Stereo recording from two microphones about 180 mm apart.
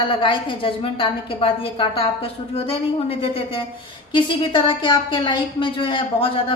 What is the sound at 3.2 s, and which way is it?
A woman's voice, 30° left (ahead or behind).